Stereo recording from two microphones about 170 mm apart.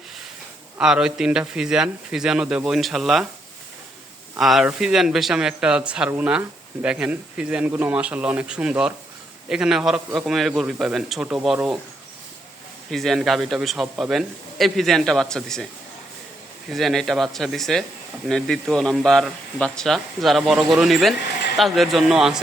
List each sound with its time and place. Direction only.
0.8 s a man's voice: 5° right (ahead or behind)
4.4 s a man's voice: centre (ahead or behind)
12.9 s a man's voice: centre (ahead or behind)
16.6 s a man's voice: centre (ahead or behind)